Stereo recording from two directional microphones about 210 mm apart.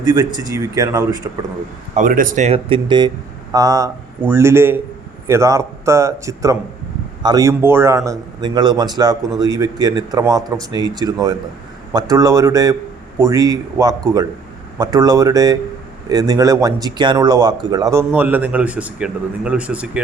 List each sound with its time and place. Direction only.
0.0 s speech: 20° right (ahead or behind)
2.0 s a man's voice: 40° right (ahead or behind); by 20.0 s 5° right (ahead or behind)